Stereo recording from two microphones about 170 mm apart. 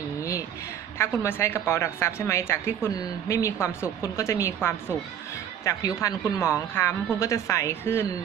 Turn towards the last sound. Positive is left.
turn(degrees=15)  # may be behind; listen again after turning